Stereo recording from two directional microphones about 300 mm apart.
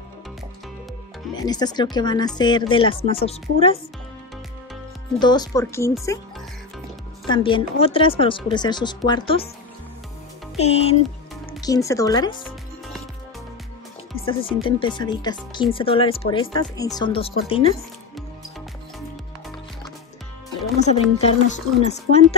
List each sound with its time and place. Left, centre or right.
1.3 s speech: centre
5.2 s speech: centre
7.2 s speech: centre
10.6 s speech: left
14.2 s speech: centre
20.8 s speech: left